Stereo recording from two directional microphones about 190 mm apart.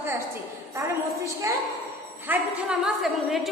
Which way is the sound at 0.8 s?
15° right (ahead or behind).